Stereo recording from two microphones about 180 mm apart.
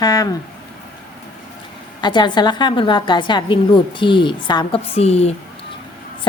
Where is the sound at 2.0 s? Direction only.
25° left (ahead or behind).